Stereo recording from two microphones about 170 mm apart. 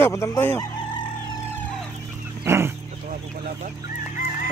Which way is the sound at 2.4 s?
15° right (ahead or behind).